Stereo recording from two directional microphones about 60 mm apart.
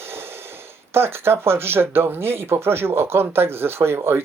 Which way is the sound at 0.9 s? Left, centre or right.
Right.